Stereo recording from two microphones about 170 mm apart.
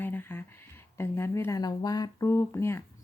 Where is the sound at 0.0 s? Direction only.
10° left (ahead or behind).